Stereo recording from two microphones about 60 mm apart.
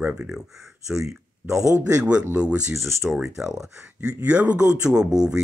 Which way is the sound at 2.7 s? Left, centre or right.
Right.